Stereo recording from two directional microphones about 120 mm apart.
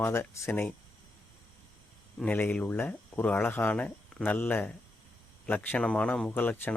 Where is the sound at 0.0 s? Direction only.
20° left (ahead or behind).